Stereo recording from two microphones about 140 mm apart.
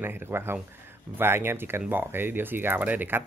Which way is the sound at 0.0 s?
15° right (ahead or behind).